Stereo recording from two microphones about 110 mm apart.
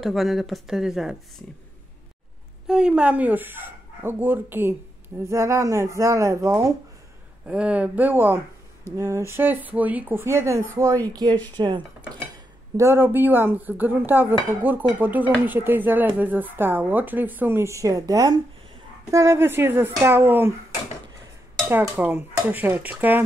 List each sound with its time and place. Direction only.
0.0 s speech: centre (ahead or behind)
2.6 s speech: 5° right (ahead or behind); by 6.7 s 30° right (ahead or behind)
7.4 s speech: 10° right (ahead or behind); by 11.0 s 25° right (ahead or behind)
11.5 s speech: 45° right (ahead or behind)
12.7 s speech: 25° right (ahead or behind)
21.6 s speech: 15° right (ahead or behind)